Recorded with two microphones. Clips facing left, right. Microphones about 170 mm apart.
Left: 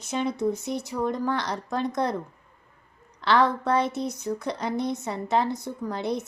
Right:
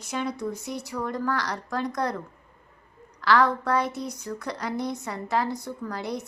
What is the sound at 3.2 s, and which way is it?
Speech, 25° left (ahead or behind).